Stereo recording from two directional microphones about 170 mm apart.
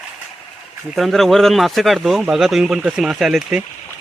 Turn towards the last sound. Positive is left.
turn(degrees=0)  # may be behind; listen again after turning